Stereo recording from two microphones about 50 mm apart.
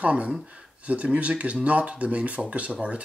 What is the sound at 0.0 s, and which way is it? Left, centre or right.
Speech, right.